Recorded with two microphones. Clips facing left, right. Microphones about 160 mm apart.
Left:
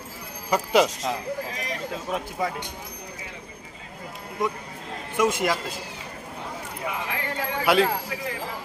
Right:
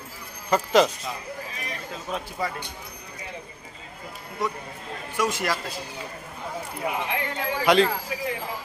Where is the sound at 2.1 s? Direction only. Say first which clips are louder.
Left 1 dB; 5° left (ahead or behind).